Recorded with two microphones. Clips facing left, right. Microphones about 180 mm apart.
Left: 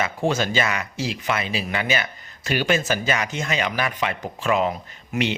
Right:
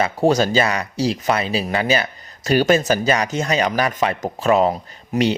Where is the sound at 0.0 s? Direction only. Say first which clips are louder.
Right 6 dB; 40° right (ahead or behind).